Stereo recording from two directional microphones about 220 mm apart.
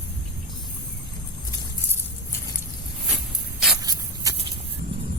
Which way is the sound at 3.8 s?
15° right (ahead or behind).